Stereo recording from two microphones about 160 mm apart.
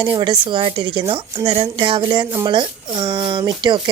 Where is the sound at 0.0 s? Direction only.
30° right (ahead or behind).